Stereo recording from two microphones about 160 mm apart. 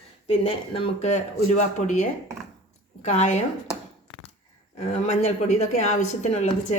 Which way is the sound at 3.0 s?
45° left (ahead or behind).